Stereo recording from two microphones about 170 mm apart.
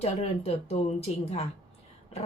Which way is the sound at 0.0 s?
40° left (ahead or behind).